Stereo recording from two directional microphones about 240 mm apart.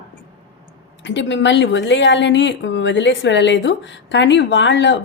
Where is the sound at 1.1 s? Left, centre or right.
Left.